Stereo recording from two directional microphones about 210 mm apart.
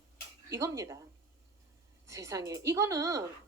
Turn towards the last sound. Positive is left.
turn(degrees=-15)  # may be behind; listen again after turning